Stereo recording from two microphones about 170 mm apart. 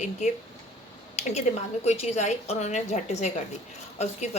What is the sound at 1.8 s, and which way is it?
A woman's voice, 40° left (ahead or behind).